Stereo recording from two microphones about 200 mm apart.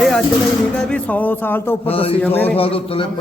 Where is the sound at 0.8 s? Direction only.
5° left (ahead or behind).